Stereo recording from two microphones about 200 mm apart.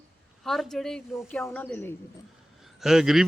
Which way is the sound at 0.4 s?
Centre (ahead or behind).